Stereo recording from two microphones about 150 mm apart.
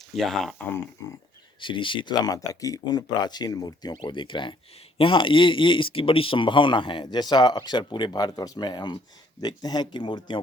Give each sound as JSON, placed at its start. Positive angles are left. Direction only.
{"t": 0.1, "sound": "speech", "side_deg": 0}
{"t": 1.6, "sound": "speech", "side_deg": 35}